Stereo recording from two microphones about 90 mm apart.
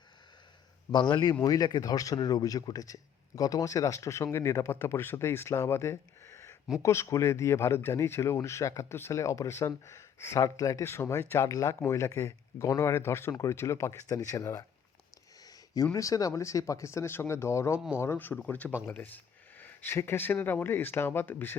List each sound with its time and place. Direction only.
0.9 s a man's voice: 60° left (ahead or behind); by 14.6 s 35° left (ahead or behind)
15.4 s a sound: 45° left (ahead or behind)
16.0 s speech: 40° left (ahead or behind); by 21.5 s 25° left (ahead or behind)